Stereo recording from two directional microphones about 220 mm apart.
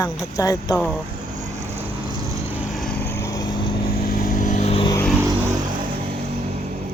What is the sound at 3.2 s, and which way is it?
Vehicle, 15° left (ahead or behind).